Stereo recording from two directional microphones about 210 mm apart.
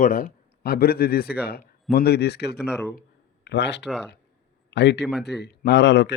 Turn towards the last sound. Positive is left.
turn(degrees=55)  # may be behind; listen again after turning